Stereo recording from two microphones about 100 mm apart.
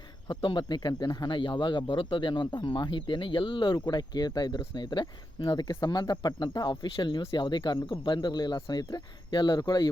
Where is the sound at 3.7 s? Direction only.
40° left (ahead or behind).